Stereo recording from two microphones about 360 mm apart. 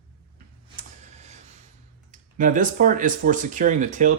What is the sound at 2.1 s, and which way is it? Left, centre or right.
Speech, right.